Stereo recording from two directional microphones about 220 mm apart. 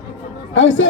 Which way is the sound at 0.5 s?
60° left (ahead or behind).